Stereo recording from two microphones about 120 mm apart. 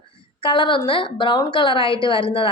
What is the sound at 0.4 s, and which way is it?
A woman's voice, 45° left (ahead or behind).